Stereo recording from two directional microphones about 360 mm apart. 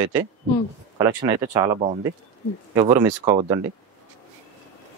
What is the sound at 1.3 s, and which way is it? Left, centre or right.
Speech, centre.